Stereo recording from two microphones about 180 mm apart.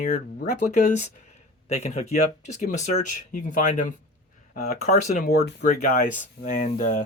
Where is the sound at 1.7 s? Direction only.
35° left (ahead or behind).